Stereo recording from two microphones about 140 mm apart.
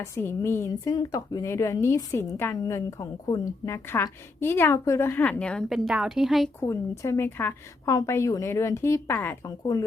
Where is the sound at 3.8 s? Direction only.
15° left (ahead or behind); by 6.5 s centre (ahead or behind).